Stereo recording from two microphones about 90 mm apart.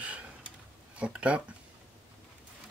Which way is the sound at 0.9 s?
15° right (ahead or behind).